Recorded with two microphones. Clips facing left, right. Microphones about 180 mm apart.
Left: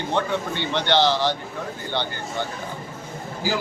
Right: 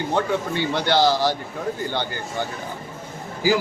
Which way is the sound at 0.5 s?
10° right (ahead or behind).